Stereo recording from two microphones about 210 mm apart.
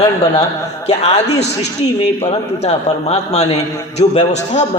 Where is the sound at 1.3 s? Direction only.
30° left (ahead or behind).